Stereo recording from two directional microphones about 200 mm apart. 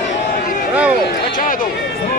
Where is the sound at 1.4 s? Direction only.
45° left (ahead or behind).